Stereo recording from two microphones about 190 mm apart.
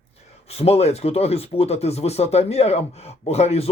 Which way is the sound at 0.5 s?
35° left (ahead or behind).